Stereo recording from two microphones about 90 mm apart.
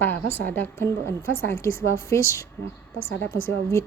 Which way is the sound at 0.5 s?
25° left (ahead or behind).